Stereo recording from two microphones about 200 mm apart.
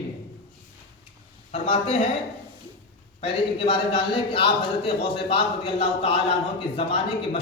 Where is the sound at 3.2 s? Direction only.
25° left (ahead or behind).